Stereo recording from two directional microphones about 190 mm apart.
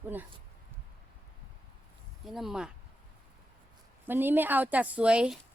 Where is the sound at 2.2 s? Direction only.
Centre (ahead or behind).